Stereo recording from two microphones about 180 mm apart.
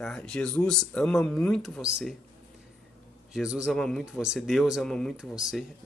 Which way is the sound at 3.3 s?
5° right (ahead or behind).